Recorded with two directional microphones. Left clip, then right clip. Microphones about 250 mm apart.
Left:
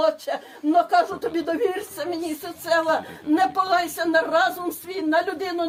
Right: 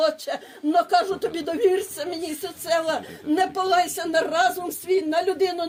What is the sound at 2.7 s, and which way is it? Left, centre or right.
Speech, right.